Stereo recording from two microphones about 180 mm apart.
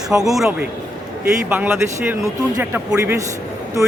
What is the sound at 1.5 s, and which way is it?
Speech, 10° right (ahead or behind).